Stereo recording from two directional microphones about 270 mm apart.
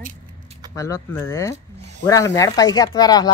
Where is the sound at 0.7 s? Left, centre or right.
Centre.